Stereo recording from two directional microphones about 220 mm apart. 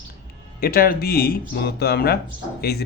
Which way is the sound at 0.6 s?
40° left (ahead or behind).